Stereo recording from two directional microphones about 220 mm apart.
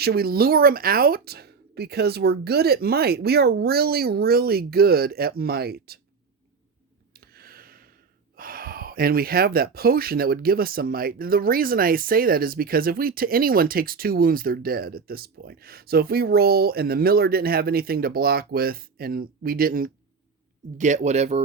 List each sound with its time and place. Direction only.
0.0 s speech: 45° right (ahead or behind)
7.1 s gasp: 45° right (ahead or behind)
8.4 s speech: 40° right (ahead or behind)